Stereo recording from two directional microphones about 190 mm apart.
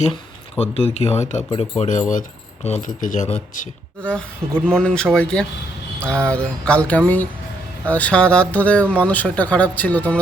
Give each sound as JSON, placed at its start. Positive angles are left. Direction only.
{"t": 0.6, "sound": "speech", "side_deg": 30}
{"t": 4.0, "sound": "speech", "side_deg": 5}